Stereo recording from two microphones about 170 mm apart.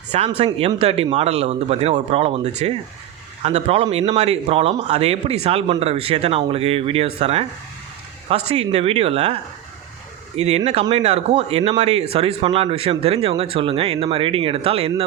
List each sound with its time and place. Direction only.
0.1 s speech: 40° right (ahead or behind)